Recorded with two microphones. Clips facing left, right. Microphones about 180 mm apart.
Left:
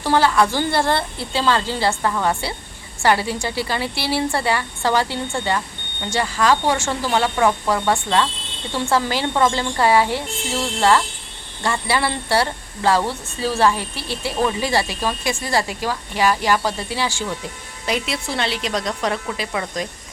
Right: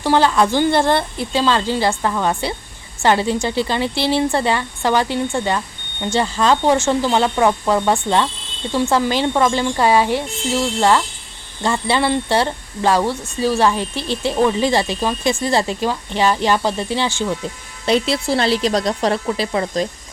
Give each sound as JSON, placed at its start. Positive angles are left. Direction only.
{"t": 0.0, "sound": "a woman's voice", "side_deg": -15}
{"t": 17.8, "sound": "speech", "side_deg": -35}